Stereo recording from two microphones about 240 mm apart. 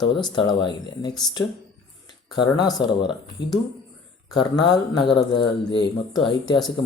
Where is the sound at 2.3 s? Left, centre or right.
Centre.